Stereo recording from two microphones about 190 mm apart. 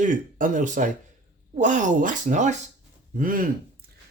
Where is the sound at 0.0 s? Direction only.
45° right (ahead or behind).